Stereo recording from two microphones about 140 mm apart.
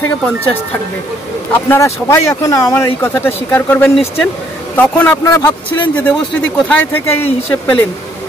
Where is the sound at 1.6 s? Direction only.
20° left (ahead or behind).